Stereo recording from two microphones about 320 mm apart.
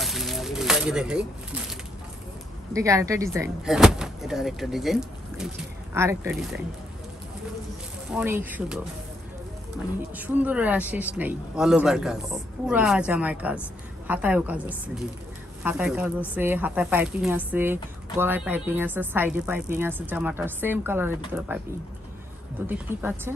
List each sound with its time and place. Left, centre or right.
0.0 s a sound: centre
2.7 s speech: centre
8.1 s speech: centre
10.1 s speech: centre
22.7 s speech: centre